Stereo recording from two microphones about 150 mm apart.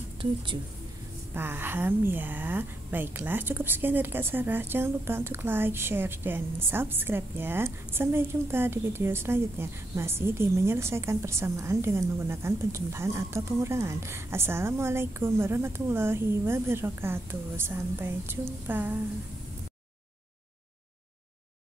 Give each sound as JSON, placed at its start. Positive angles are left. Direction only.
{"t": 1.3, "sound": "a woman's voice", "side_deg": -15}